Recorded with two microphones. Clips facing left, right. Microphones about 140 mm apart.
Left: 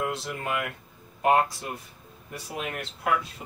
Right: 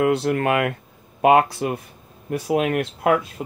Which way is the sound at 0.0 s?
65° right (ahead or behind).